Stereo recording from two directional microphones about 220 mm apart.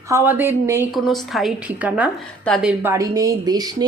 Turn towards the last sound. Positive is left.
turn(degrees=-20)  # may be behind; listen again after turning